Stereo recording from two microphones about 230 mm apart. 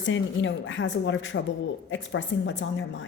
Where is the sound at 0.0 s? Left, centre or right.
Left.